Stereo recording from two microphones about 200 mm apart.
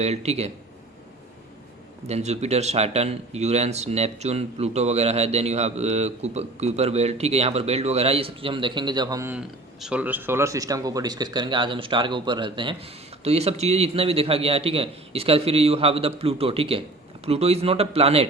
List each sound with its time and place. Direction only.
0.0 s speech: 35° right (ahead or behind)
2.0 s speech: 35° right (ahead or behind)